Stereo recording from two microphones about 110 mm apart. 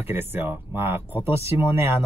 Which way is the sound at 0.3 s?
20° right (ahead or behind).